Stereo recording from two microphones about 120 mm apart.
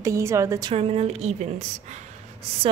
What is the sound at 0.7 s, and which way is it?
A woman's voice, 55° right (ahead or behind).